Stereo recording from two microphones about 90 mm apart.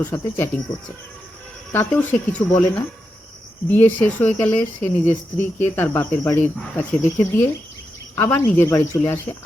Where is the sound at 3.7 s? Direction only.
20° left (ahead or behind).